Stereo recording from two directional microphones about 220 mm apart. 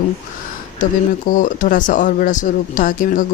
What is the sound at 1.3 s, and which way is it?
Speech, 35° left (ahead or behind).